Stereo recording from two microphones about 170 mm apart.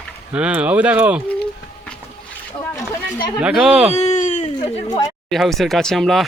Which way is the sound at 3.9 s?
40° left (ahead or behind).